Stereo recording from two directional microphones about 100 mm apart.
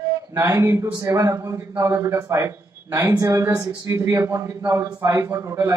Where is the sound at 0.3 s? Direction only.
30° right (ahead or behind).